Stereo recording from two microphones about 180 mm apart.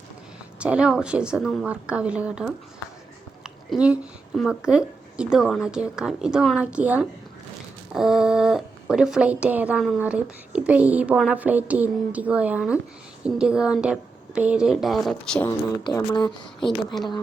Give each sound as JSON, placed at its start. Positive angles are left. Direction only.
{"t": 0.6, "sound": "a woman's voice", "side_deg": -5}
{"t": 3.4, "sound": "a woman's voice", "side_deg": -5}
{"t": 15.4, "sound": "speech", "side_deg": 20}
{"t": 16.6, "sound": "a woman's voice", "side_deg": 0}